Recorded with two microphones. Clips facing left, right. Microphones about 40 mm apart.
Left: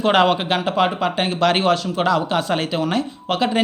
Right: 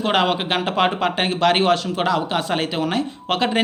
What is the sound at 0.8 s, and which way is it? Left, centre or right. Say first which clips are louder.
Speech: right 1 dB; right.